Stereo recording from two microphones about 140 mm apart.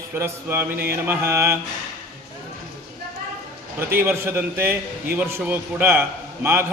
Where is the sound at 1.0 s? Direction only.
20° right (ahead or behind).